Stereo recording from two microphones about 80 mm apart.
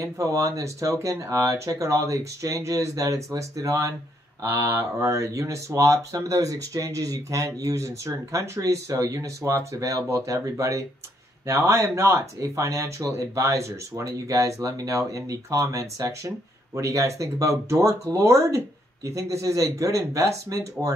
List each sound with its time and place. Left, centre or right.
0.0 s speech: right